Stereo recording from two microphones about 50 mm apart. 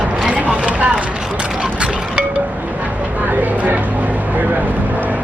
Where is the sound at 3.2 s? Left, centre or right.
Right.